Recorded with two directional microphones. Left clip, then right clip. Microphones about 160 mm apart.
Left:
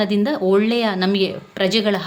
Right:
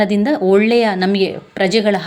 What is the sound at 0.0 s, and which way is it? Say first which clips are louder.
Speech: right 4 dB; 20° right (ahead or behind).